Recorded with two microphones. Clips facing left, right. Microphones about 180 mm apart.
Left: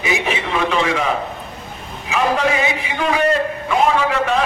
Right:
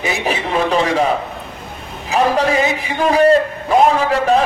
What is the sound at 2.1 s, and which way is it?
A man's voice, 35° right (ahead or behind).